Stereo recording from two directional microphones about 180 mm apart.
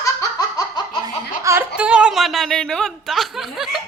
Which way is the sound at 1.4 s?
15° right (ahead or behind).